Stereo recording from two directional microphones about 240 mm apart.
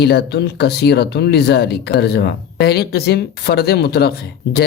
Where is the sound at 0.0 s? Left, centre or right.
Left.